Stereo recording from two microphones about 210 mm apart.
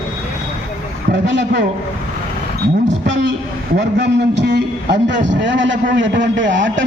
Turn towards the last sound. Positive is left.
turn(degrees=-60)  # may be behind; listen again after turning